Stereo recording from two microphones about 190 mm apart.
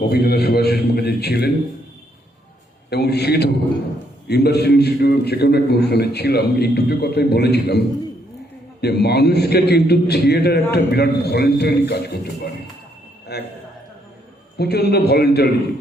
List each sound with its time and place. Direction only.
0.0 s a man's voice: 55° left (ahead or behind)
2.9 s a man's voice: 60° left (ahead or behind)
8.8 s a man's voice: 60° left (ahead or behind)
13.3 s a man's voice: 60° left (ahead or behind)
14.6 s a man's voice: 60° left (ahead or behind)